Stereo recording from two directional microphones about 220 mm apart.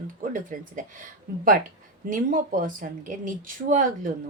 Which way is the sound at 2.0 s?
35° right (ahead or behind).